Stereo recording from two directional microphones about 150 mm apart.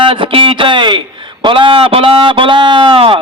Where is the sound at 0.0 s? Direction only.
35° right (ahead or behind).